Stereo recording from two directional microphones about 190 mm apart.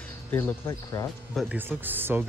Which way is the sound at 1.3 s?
Centre (ahead or behind).